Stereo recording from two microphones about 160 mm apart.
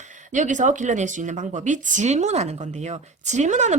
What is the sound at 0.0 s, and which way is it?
Speech, 50° right (ahead or behind).